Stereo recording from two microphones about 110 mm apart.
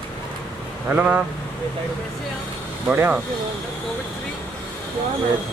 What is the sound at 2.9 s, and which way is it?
Speech, 15° right (ahead or behind).